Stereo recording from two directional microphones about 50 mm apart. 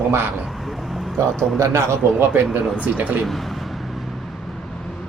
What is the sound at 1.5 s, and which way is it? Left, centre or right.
Speech, right.